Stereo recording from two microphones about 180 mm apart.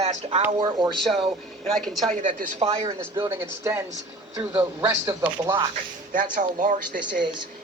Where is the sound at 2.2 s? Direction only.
35° right (ahead or behind).